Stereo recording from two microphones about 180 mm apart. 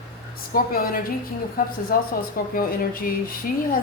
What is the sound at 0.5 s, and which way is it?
Speech, 55° left (ahead or behind).